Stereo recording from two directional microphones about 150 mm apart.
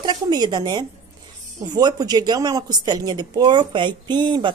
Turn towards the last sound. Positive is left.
turn(degrees=-30)  # may be behind; listen again after turning